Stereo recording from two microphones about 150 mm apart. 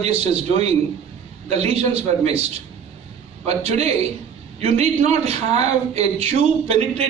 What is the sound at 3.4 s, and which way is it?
Speech, 45° right (ahead or behind).